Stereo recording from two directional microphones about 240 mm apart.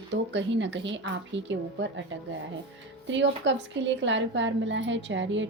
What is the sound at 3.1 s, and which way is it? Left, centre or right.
A woman's voice, right.